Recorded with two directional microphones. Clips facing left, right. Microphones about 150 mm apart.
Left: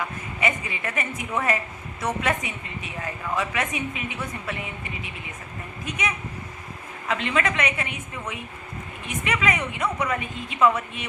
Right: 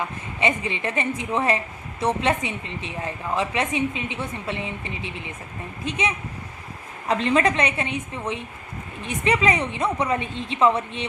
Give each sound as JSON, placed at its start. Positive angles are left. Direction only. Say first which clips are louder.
{"t": 0.0, "sound": "a woman's voice", "louder": "right 2 dB", "side_deg": -25}